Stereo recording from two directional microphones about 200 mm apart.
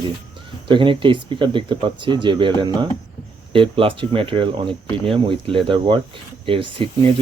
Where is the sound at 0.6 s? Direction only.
25° right (ahead or behind).